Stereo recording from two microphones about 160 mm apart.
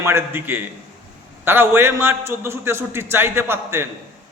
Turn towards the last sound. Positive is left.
turn(degrees=-15)  # may be behind; listen again after turning